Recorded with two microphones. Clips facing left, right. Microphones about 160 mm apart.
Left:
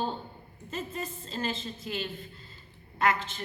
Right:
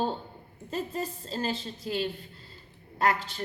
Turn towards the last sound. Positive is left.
turn(degrees=-35)  # may be behind; listen again after turning